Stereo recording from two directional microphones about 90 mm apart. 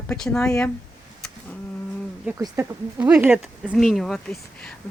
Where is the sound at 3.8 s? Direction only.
5° left (ahead or behind).